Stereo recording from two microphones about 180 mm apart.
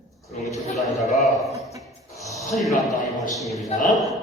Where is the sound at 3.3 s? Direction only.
Centre (ahead or behind).